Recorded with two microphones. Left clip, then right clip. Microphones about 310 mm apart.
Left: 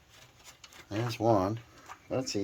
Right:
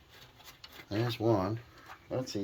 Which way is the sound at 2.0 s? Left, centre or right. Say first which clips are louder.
Left 3 dB; left.